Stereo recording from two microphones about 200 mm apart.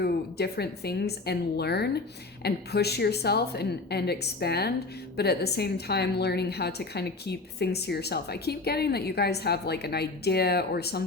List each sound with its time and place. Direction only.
0.0 s a woman's voice: 55° left (ahead or behind)